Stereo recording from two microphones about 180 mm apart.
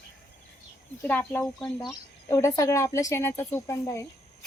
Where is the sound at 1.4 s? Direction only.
Centre (ahead or behind).